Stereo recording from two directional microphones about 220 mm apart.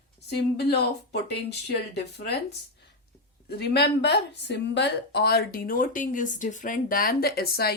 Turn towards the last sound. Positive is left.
turn(degrees=45)  # may be behind; listen again after turning